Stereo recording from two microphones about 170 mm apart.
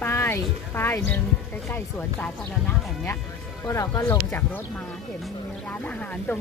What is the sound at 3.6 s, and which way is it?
Speech, 15° left (ahead or behind).